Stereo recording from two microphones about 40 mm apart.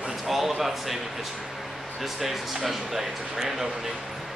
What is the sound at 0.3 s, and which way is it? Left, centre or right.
Speech, centre.